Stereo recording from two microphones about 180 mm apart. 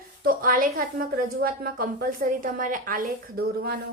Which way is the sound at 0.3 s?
50° right (ahead or behind).